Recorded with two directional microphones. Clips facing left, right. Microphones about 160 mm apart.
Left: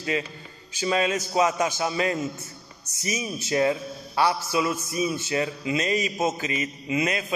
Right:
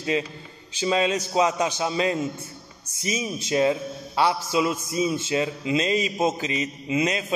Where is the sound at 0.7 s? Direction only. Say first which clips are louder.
Right 2 dB; 20° right (ahead or behind).